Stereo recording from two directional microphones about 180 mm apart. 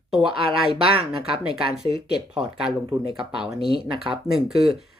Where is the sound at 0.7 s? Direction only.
30° right (ahead or behind).